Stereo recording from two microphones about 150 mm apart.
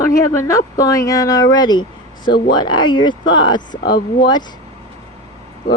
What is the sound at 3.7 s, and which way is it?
Speech, 90° left.